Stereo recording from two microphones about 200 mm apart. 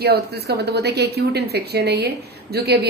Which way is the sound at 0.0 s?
55° right (ahead or behind).